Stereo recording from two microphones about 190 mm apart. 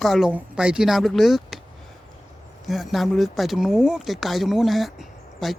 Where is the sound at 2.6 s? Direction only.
Centre (ahead or behind).